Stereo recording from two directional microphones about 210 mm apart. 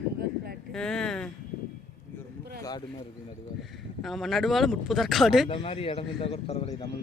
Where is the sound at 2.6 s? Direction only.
20° left (ahead or behind).